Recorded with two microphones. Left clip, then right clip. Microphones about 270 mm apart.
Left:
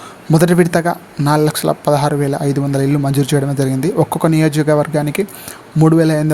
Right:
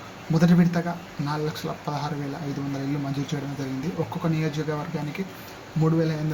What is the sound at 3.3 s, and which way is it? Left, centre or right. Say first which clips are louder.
Speech: left 15 dB; left.